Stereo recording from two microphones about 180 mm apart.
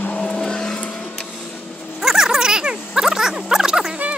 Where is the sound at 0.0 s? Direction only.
5° left (ahead or behind).